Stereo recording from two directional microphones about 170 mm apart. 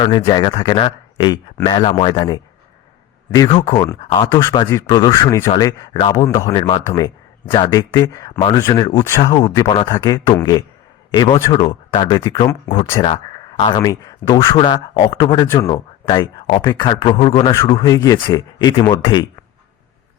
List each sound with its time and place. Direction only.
0.0 s speech: 25° left (ahead or behind)
4.3 s speech: 15° left (ahead or behind)
9.3 s speech: 30° left (ahead or behind)
17.8 s speech: 20° left (ahead or behind)